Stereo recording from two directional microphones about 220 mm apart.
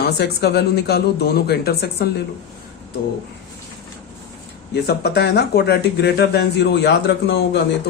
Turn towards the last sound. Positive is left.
turn(degrees=50)  # may be behind; listen again after turning